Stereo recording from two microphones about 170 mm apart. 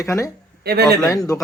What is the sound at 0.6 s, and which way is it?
Speech, 70° right (ahead or behind).